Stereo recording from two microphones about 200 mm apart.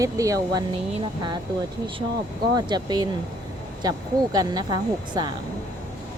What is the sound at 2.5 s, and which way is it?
Speech, 20° right (ahead or behind).